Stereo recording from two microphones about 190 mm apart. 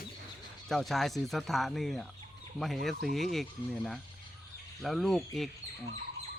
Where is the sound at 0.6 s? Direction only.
Centre (ahead or behind).